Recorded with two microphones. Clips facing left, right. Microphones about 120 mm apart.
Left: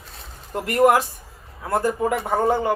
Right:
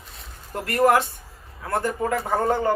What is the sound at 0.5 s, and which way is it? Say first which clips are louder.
Speech: left 3 dB; 25° left (ahead or behind).